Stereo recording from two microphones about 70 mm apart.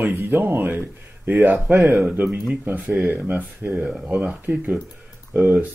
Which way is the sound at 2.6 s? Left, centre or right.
Right.